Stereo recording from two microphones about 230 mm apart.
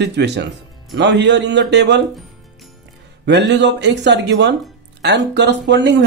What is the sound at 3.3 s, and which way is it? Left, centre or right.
Speech, right.